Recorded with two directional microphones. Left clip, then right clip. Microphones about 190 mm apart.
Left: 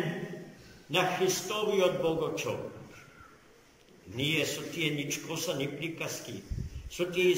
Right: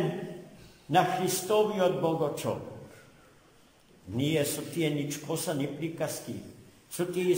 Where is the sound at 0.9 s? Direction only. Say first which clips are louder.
Right 2 dB; 45° right (ahead or behind).